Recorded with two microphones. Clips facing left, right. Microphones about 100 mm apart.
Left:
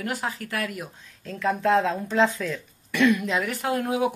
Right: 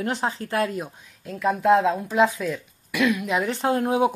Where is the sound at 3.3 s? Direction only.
25° right (ahead or behind).